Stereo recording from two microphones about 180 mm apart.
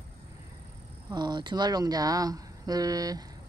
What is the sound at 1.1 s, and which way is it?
Speech, 25° right (ahead or behind).